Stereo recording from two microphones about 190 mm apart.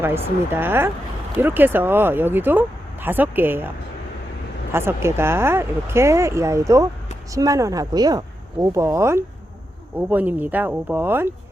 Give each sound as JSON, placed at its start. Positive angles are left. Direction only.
{"t": 0.0, "sound": "speech", "side_deg": -10}
{"t": 4.7, "sound": "a woman's voice", "side_deg": -15}